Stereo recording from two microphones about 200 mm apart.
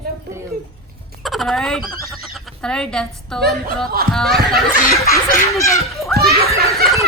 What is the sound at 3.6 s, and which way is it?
Speech, 50° right (ahead or behind).